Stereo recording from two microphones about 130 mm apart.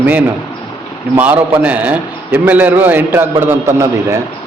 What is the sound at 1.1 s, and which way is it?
A man's voice, 15° right (ahead or behind).